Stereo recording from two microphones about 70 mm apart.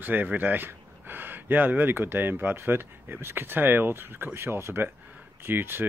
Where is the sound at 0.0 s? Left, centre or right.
Right.